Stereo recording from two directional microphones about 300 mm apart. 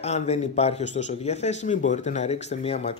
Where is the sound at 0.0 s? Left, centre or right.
Left.